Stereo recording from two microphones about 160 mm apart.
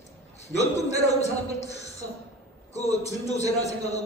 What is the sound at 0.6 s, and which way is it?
A man's voice, 45° left (ahead or behind).